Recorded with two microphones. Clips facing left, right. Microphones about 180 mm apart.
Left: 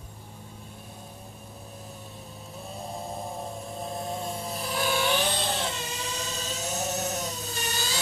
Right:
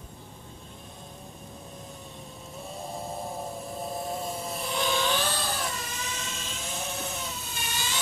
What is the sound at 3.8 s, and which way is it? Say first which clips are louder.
Vehicle: even; centre (ahead or behind).